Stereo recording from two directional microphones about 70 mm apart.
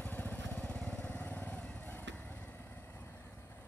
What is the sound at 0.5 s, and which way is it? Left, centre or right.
Lawn mower, centre.